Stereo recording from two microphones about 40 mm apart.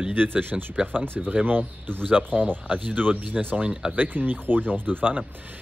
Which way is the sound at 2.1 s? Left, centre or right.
Right.